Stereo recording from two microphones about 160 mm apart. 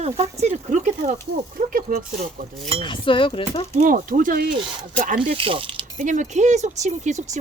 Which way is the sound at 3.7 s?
55° right (ahead or behind).